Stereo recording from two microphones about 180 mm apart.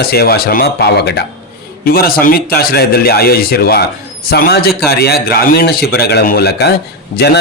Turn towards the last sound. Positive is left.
turn(degrees=60)  # may be behind; listen again after turning